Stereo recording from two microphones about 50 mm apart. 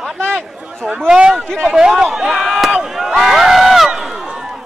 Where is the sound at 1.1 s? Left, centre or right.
Centre.